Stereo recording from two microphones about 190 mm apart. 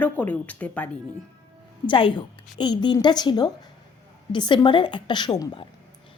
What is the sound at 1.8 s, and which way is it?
A woman's voice, 25° left (ahead or behind).